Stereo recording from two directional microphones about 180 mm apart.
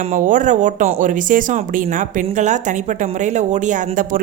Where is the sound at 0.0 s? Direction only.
45° right (ahead or behind).